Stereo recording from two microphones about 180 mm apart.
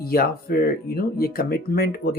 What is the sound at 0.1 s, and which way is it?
Speech, 55° left (ahead or behind).